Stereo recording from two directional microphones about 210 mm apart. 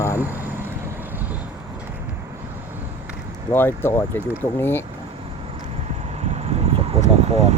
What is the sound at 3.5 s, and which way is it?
Speech, 10° left (ahead or behind).